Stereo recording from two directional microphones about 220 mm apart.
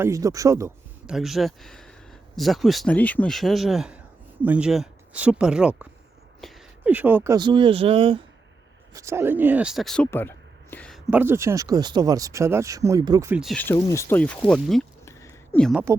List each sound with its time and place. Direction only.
0.0 s a man's voice: 15° right (ahead or behind)
1.1 s a woman's voice: centre (ahead or behind)
7.3 s speech: 20° right (ahead or behind)
8.9 s speech: 15° right (ahead or behind)
13.4 s speech: 5° left (ahead or behind)
15.0 s a sound: 15° left (ahead or behind)
15.9 s speech: 10° right (ahead or behind)